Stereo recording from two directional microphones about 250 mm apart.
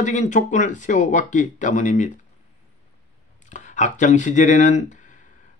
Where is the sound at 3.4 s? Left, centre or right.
Left.